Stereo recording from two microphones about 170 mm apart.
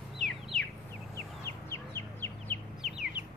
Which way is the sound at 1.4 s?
15° left (ahead or behind).